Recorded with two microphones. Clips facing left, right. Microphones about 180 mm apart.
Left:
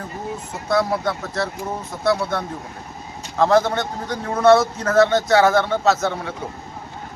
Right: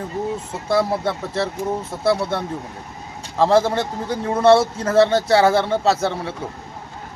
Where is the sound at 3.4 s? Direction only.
30° right (ahead or behind).